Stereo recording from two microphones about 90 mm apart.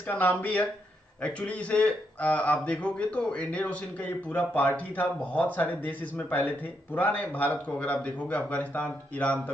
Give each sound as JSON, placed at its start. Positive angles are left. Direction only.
{"t": 0.0, "sound": "a man's voice", "side_deg": 20}